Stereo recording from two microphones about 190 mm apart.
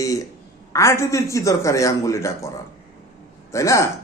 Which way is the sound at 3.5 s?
15° left (ahead or behind).